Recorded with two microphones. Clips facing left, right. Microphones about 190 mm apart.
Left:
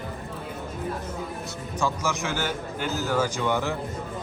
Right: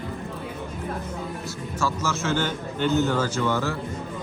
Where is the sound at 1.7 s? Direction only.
15° left (ahead or behind).